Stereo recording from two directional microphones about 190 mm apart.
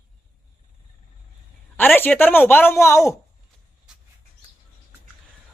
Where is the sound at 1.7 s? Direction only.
10° left (ahead or behind).